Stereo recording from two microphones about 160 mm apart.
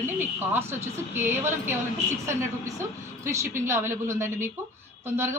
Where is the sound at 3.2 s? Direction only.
20° right (ahead or behind).